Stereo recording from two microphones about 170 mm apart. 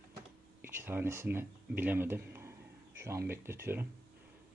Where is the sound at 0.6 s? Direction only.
15° right (ahead or behind).